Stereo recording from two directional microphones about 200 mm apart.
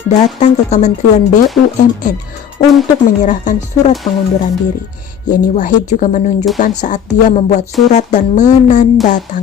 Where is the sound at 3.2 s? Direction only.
40° left (ahead or behind).